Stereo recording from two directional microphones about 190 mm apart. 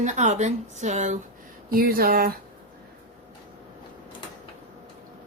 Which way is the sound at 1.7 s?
50° right (ahead or behind).